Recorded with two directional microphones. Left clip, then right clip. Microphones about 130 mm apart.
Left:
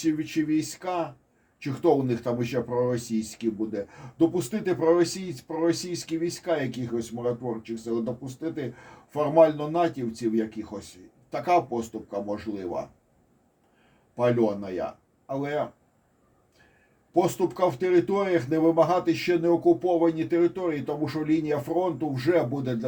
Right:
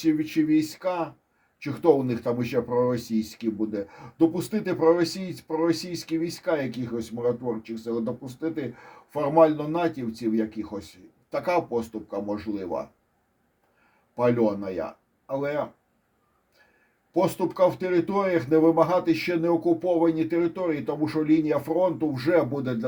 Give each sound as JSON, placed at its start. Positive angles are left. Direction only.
{"t": 0.0, "sound": "speech", "side_deg": -50}
{"t": 14.2, "sound": "speech", "side_deg": -45}
{"t": 17.1, "sound": "speech", "side_deg": -45}